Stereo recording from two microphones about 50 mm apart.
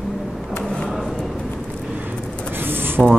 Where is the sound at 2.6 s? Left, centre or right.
Right.